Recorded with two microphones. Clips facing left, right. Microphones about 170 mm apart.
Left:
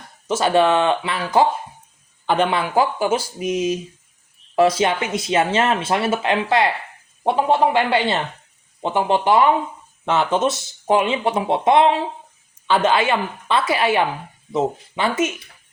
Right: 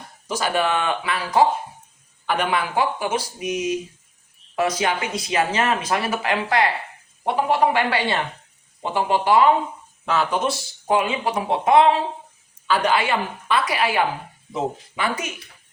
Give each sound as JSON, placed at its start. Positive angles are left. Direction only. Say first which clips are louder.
{"t": 0.3, "sound": "speech", "louder": "left 6 dB", "side_deg": 25}
{"t": 7.7, "sound": "speech", "louder": "left 3 dB", "side_deg": 20}